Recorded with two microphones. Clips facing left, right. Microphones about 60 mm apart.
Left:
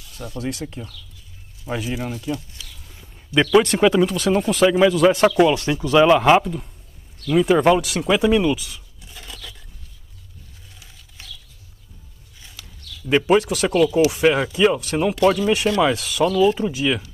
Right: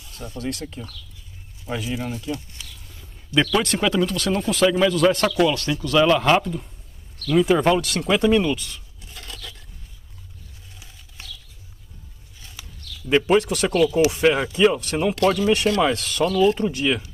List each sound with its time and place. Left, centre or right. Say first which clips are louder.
0.4 s speech: left 1 dB; centre
2.9 s a sound: left 1 dB; centre
3.6 s speech: left 5 dB; centre
5.3 s speech: left 3 dB; centre
12.6 s a sound: right 1 dB; centre
13.0 s speech: left 1 dB; centre